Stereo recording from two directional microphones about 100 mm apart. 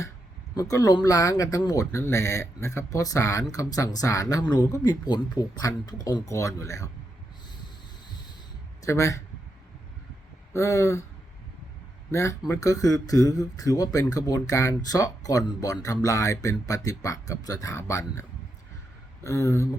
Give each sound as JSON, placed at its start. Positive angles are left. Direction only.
{"t": 0.5, "sound": "speech", "side_deg": 35}
{"t": 6.2, "sound": "speech", "side_deg": 30}
{"t": 8.8, "sound": "speech", "side_deg": 30}
{"t": 10.5, "sound": "speech", "side_deg": 30}
{"t": 12.1, "sound": "speech", "side_deg": 30}